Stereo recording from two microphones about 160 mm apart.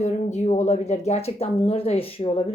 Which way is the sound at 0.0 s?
45° left (ahead or behind).